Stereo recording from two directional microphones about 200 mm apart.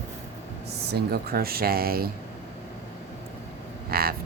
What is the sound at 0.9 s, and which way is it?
Speech, 50° right (ahead or behind).